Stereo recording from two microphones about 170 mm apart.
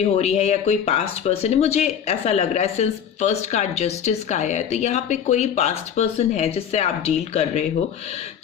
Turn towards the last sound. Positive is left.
turn(degrees=40)  # may be behind; listen again after turning